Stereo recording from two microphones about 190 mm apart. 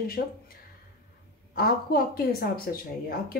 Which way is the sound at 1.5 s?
55° left (ahead or behind).